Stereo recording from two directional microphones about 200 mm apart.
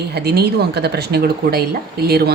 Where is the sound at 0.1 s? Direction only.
55° right (ahead or behind).